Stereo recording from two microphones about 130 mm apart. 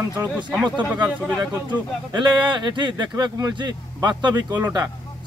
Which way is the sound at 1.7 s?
35° right (ahead or behind).